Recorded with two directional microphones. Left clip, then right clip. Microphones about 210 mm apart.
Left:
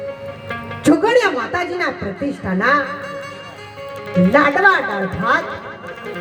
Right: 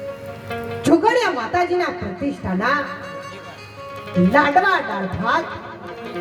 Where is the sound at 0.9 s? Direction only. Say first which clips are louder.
Left 2 dB; 15° left (ahead or behind).